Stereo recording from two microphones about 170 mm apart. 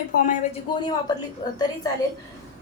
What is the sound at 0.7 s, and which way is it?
Speech, 30° left (ahead or behind).